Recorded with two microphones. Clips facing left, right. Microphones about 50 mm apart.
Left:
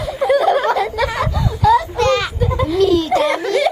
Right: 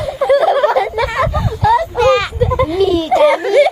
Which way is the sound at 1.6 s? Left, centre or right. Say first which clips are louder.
Right 2 dB; centre.